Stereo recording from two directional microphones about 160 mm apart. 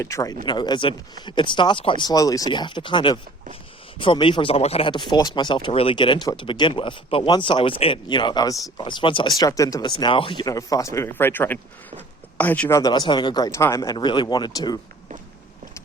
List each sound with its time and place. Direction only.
0.0 s speech: 20° left (ahead or behind)